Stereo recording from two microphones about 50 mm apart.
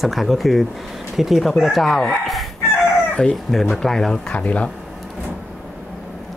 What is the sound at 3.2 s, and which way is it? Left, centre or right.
Speech, centre.